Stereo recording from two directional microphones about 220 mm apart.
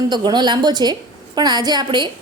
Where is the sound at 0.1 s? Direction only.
20° right (ahead or behind).